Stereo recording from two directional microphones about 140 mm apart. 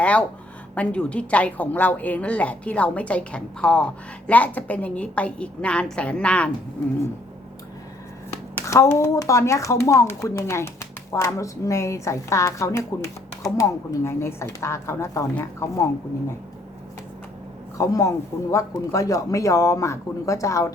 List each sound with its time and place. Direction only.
0.0 s a woman's voice: 10° left (ahead or behind)
8.6 s speech: 20° left (ahead or behind)
17.7 s speech: 25° left (ahead or behind)